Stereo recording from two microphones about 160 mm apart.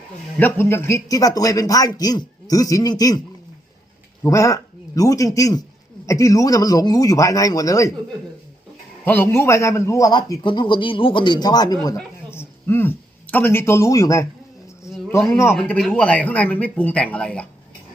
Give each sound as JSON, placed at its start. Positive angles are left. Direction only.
{"t": 0.3, "sound": "a man's voice", "side_deg": 15}
{"t": 4.2, "sound": "a man's voice", "side_deg": 20}
{"t": 9.0, "sound": "a man's voice", "side_deg": 15}
{"t": 15.3, "sound": "speech", "side_deg": 15}
{"t": 15.5, "sound": "speech", "side_deg": 5}